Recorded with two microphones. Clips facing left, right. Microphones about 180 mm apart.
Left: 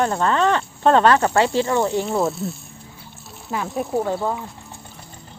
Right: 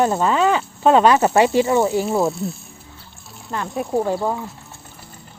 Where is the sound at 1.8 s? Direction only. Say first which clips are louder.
Right 2 dB; 5° right (ahead or behind).